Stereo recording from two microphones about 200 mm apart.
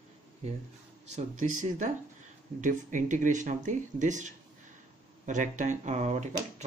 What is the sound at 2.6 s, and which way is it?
Speech, 40° right (ahead or behind).